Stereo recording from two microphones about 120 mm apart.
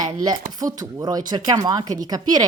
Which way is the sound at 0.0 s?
30° right (ahead or behind).